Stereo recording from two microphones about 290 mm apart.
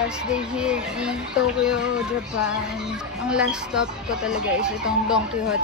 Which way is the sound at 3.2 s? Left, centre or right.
Centre.